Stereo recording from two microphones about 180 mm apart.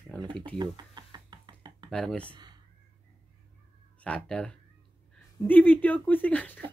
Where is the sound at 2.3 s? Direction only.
25° right (ahead or behind).